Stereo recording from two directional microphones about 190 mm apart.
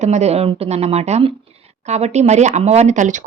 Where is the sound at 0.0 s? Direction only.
35° right (ahead or behind).